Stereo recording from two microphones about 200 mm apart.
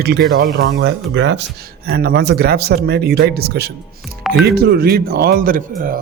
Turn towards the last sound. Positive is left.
turn(degrees=-45)  # may be behind; listen again after turning